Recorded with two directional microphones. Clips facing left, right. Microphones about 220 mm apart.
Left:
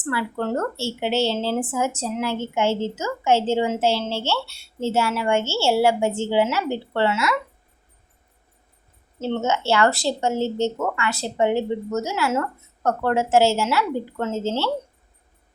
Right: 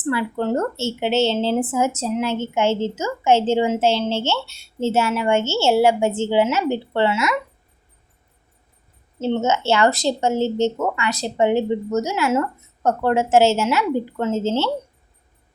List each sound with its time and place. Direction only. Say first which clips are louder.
0.0 s a woman's voice: right 3 dB; 20° right (ahead or behind)
9.2 s a woman's voice: right 3 dB; 20° right (ahead or behind)